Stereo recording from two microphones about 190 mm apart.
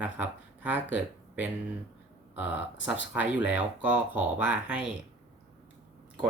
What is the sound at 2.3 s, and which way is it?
Speech, 10° right (ahead or behind).